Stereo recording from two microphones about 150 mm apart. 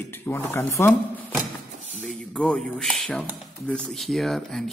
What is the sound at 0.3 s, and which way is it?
Speech, 15° left (ahead or behind).